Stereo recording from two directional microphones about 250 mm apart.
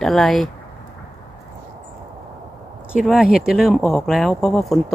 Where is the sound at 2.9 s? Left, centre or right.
Centre.